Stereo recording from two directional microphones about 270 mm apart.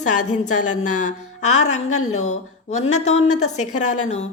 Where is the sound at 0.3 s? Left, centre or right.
Left.